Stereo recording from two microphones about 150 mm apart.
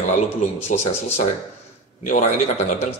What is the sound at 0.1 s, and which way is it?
A man's voice, 50° left (ahead or behind).